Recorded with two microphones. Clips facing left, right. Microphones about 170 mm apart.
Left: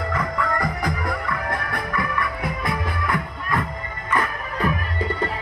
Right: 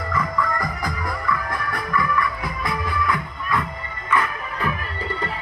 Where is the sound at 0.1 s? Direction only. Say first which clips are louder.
Right 3 dB; 65° left (ahead or behind).